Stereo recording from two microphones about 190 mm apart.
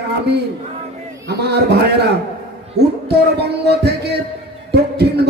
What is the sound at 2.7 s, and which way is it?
Speech, 60° right (ahead or behind).